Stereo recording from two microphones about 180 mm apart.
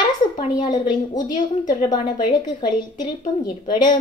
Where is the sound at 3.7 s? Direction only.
25° left (ahead or behind).